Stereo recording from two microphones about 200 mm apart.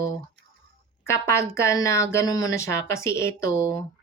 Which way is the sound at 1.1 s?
15° left (ahead or behind).